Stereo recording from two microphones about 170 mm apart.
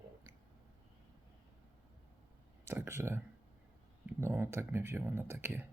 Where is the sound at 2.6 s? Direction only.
15° right (ahead or behind).